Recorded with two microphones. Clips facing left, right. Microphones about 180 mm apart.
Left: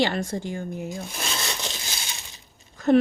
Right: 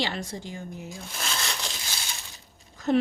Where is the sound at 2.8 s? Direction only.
55° left (ahead or behind).